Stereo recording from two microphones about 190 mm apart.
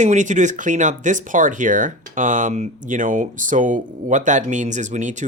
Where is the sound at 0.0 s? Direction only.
40° right (ahead or behind).